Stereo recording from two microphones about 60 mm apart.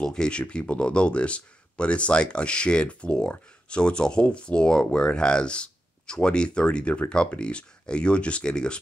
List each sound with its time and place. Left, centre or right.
0.0 s speech: centre